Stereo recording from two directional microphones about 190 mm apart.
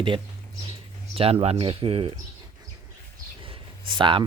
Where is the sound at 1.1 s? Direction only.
30° right (ahead or behind).